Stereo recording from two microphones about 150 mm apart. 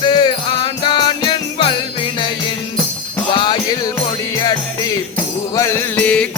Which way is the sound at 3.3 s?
30° left (ahead or behind).